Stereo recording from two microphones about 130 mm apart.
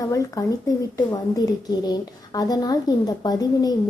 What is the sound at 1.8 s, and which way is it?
A woman's voice, 30° left (ahead or behind).